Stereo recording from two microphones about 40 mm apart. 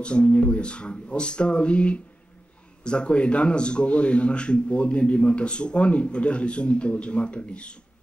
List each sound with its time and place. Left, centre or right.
0.0 s a man's voice: left